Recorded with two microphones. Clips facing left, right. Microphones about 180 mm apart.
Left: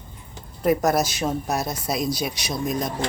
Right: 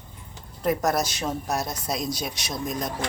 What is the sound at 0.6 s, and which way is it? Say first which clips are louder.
Speech: left 4 dB; 5° left (ahead or behind).